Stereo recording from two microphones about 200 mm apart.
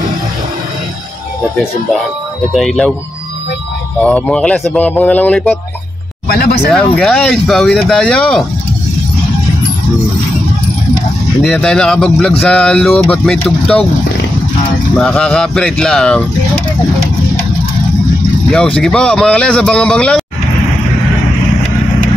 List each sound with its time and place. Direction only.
2.5 s speech: centre (ahead or behind)
4.0 s speech: 5° left (ahead or behind)
6.2 s speech: 50° left (ahead or behind)
6.7 s speech: 5° left (ahead or behind)
11.4 s speech: 5° left (ahead or behind)
15.0 s speech: 5° left (ahead or behind)
18.8 s speech: 5° left (ahead or behind)